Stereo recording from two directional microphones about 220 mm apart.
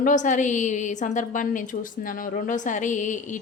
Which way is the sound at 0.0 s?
35° left (ahead or behind).